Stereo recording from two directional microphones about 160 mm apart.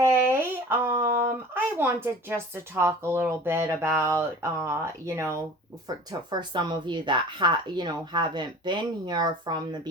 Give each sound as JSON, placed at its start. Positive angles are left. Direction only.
{"t": 0.0, "sound": "a sound", "side_deg": -15}
{"t": 2.7, "sound": "speech", "side_deg": -15}
{"t": 6.1, "sound": "speech", "side_deg": -25}